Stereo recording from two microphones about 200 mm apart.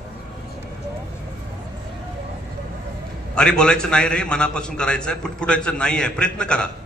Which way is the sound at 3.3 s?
5° left (ahead or behind).